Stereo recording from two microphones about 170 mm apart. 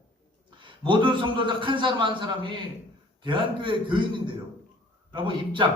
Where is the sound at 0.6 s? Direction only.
30° right (ahead or behind).